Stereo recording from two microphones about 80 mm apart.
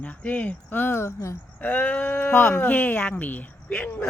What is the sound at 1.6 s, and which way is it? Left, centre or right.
Speech, centre.